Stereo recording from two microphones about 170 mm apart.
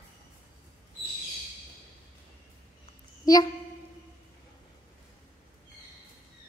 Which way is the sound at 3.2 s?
25° left (ahead or behind).